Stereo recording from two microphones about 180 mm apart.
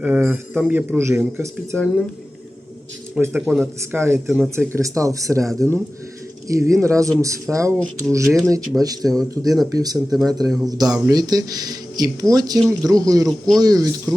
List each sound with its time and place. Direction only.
0.0 s speech: 10° right (ahead or behind)
3.2 s speech: 5° right (ahead or behind); by 14.1 s 20° right (ahead or behind)